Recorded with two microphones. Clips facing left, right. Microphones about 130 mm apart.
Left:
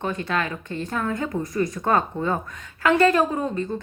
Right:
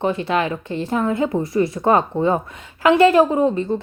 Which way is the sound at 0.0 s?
25° right (ahead or behind).